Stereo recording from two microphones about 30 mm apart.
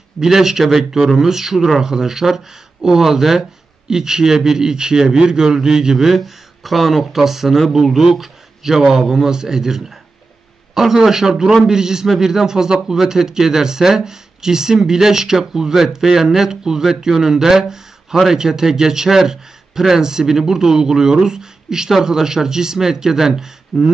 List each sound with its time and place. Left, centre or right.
0.2 s a man's voice: centre
6.0 s speech: centre
7.1 s a man's voice: centre